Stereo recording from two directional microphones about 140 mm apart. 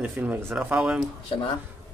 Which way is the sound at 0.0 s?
10° right (ahead or behind).